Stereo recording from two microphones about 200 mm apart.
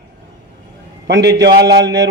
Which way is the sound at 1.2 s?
55° right (ahead or behind).